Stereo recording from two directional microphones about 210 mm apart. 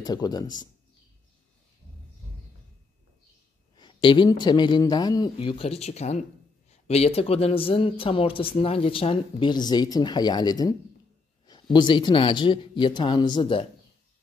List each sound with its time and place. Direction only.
0.0 s speech: 20° left (ahead or behind)
3.7 s speech: 20° left (ahead or behind)